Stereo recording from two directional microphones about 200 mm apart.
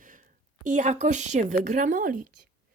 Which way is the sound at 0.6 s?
40° right (ahead or behind).